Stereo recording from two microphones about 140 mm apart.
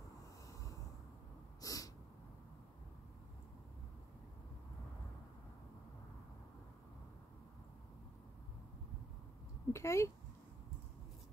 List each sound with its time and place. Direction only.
1.6 s sneeze: 25° left (ahead or behind)
9.7 s speech: 20° left (ahead or behind)